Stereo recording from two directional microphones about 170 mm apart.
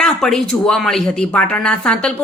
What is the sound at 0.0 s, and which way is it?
A woman's voice, centre (ahead or behind).